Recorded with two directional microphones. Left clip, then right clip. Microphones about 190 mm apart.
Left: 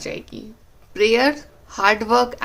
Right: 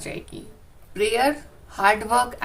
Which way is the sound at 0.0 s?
30° left (ahead or behind).